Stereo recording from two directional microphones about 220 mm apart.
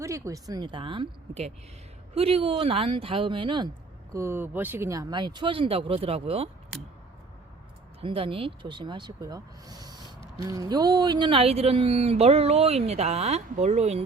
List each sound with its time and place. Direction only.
0.0 s speech: 15° right (ahead or behind)
4.1 s speech: 10° right (ahead or behind); by 6.5 s 25° right (ahead or behind)
8.0 s speech: 25° right (ahead or behind)